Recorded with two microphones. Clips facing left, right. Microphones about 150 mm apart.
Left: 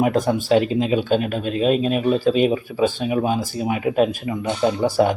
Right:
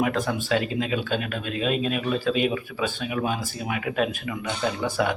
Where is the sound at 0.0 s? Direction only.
40° left (ahead or behind).